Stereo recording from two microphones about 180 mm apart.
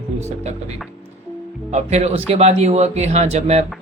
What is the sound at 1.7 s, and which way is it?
Speech, 40° right (ahead or behind).